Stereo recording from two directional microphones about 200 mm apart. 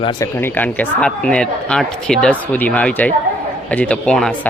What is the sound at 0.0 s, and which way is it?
Speech, 15° left (ahead or behind).